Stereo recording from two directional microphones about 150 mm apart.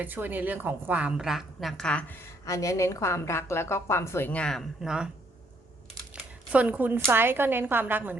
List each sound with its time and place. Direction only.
0.0 s a woman's voice: 10° right (ahead or behind); by 2.0 s 5° left (ahead or behind)
2.5 s a woman's voice: 20° left (ahead or behind); by 5.0 s 5° right (ahead or behind)
6.5 s a woman's voice: 10° right (ahead or behind)